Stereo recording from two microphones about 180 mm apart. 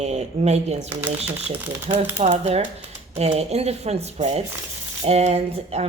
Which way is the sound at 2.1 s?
40° right (ahead or behind).